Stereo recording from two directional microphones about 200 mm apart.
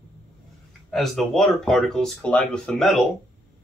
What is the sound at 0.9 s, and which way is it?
Speech, centre (ahead or behind).